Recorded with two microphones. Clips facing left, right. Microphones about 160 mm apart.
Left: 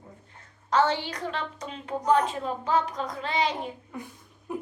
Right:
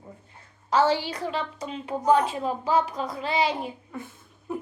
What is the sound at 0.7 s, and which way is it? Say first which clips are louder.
A woman's voice: right 2 dB; 10° right (ahead or behind).